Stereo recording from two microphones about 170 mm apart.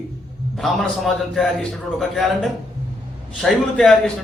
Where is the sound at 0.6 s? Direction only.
Centre (ahead or behind).